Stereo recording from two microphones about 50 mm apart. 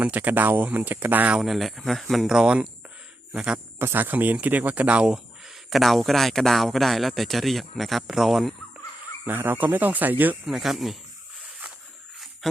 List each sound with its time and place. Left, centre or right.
0.0 s speech: right
1.4 s speech: centre
2.2 s speech: centre
3.9 s speech: right
5.1 s speech: centre
9.2 s speech: right
10.4 s speech: centre